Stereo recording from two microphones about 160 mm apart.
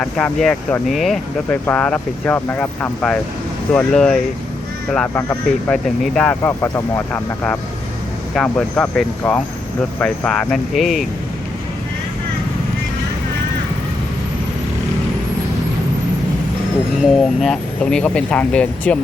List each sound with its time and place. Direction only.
0.0 s speech: 5° left (ahead or behind)
1.5 s speech: 10° left (ahead or behind)
17.0 s speech: centre (ahead or behind)